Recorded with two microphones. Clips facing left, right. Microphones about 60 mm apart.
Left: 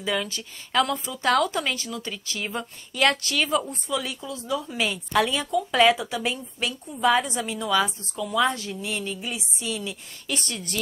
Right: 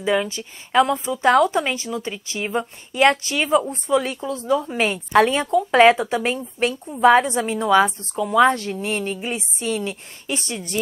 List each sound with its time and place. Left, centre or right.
0.0 s speech: right
10.2 s a woman's voice: right